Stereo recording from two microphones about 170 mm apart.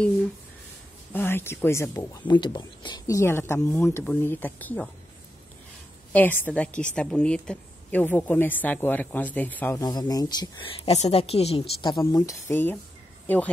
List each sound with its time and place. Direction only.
1.1 s speech: 10° left (ahead or behind)
6.1 s speech: 10° left (ahead or behind)
9.8 s a woman's voice: 20° left (ahead or behind)